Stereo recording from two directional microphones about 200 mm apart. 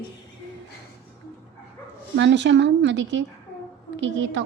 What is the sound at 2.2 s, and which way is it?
A woman's voice, 65° right (ahead or behind).